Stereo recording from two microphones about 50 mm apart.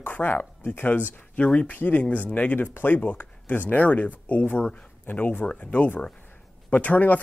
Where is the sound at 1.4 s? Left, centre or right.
Left.